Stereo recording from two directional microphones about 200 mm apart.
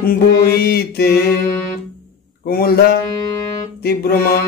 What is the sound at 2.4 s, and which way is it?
Mantra, 50° left (ahead or behind).